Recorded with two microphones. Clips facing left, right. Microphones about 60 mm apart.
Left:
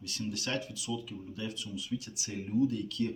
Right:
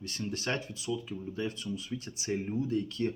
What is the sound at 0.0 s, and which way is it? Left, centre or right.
Speech, right.